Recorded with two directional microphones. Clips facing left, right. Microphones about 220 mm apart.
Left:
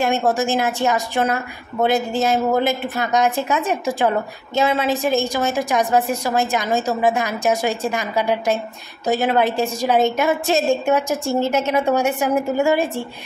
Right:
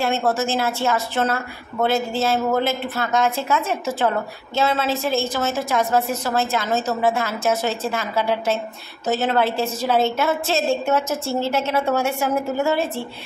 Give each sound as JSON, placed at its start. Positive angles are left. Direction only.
{"t": 0.0, "sound": "a woman's voice", "side_deg": 15}